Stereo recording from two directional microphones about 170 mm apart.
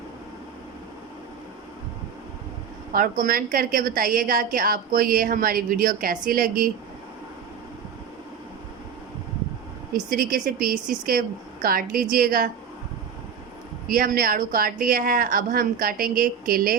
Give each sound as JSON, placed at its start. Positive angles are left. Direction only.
{"t": 2.9, "sound": "a woman's voice", "side_deg": -55}
{"t": 9.9, "sound": "a woman's voice", "side_deg": -55}
{"t": 13.8, "sound": "a woman's voice", "side_deg": -55}